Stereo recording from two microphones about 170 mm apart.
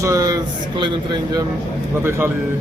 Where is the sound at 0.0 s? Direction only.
20° right (ahead or behind).